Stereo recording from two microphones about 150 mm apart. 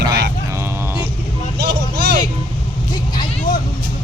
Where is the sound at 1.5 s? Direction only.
90° right.